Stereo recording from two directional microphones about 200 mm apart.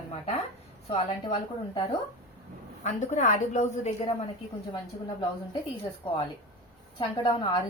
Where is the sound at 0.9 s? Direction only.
25° left (ahead or behind).